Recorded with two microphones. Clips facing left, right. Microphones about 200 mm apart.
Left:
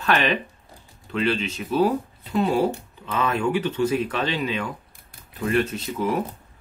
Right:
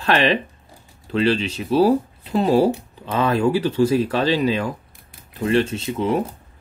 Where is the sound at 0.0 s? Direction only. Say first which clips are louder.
Right 4 dB; 30° right (ahead or behind).